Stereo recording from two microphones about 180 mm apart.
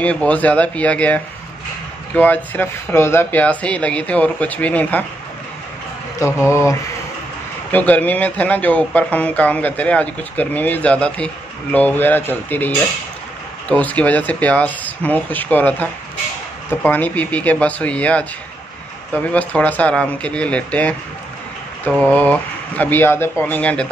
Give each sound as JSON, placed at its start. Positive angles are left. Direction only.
{"t": 0.0, "sound": "a man's voice", "side_deg": 5}
{"t": 6.4, "sound": "a man's voice", "side_deg": 15}
{"t": 7.7, "sound": "a man's voice", "side_deg": 10}
{"t": 19.3, "sound": "a man's voice", "side_deg": 10}